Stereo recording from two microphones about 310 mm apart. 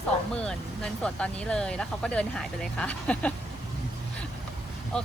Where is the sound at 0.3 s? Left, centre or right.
Centre.